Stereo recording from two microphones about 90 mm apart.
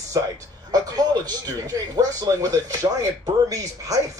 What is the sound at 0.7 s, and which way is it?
Speech, 45° right (ahead or behind).